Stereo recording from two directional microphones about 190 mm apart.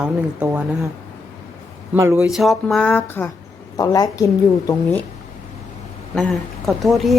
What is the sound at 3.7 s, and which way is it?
Speech, 20° left (ahead or behind).